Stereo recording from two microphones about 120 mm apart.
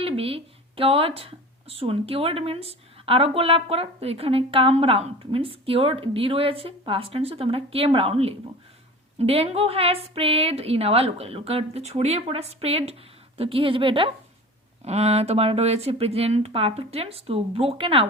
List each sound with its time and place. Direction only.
0.0 s a woman's voice: 50° right (ahead or behind)
14.8 s a woman's voice: 60° right (ahead or behind)